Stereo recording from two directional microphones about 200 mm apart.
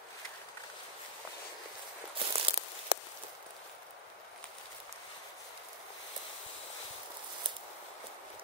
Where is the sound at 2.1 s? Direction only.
30° right (ahead or behind).